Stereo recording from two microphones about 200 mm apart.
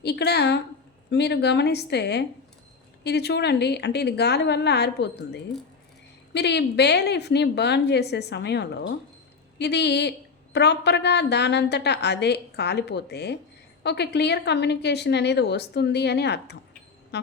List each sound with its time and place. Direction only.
0.0 s a woman's voice: 55° left (ahead or behind)